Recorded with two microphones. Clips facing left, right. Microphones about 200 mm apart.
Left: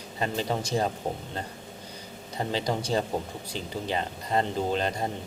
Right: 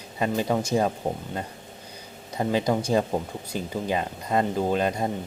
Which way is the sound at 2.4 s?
15° right (ahead or behind).